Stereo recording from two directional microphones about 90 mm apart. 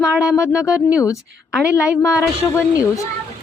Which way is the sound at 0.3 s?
35° left (ahead or behind).